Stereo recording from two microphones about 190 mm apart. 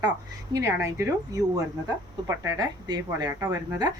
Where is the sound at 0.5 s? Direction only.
15° right (ahead or behind).